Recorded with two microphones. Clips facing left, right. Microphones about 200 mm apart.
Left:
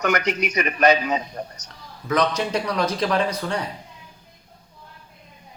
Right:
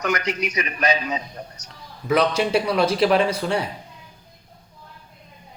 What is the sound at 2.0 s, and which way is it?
Speech, 10° right (ahead or behind).